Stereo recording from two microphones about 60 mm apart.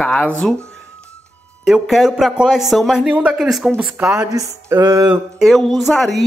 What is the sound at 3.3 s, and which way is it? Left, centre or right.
Speech, centre.